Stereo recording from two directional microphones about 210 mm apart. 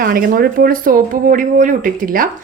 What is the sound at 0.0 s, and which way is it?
A woman's voice, 45° right (ahead or behind).